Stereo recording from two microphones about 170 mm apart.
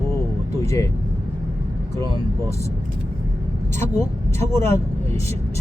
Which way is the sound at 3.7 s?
15° left (ahead or behind).